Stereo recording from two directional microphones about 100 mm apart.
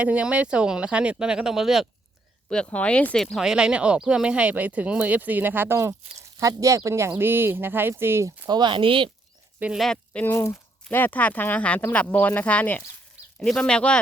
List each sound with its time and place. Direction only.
0.0 s speech: 10° right (ahead or behind)
2.6 s speech: 15° left (ahead or behind)
3.3 s speech: 5° right (ahead or behind); by 8.3 s 25° right (ahead or behind)
8.4 s speech: 50° right (ahead or behind)
9.7 s speech: 5° left (ahead or behind)